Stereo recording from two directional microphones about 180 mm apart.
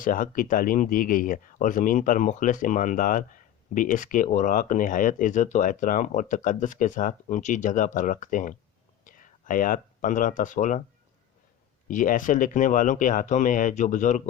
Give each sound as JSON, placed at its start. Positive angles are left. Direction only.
{"t": 0.0, "sound": "speech", "side_deg": 50}
{"t": 11.9, "sound": "speech", "side_deg": 45}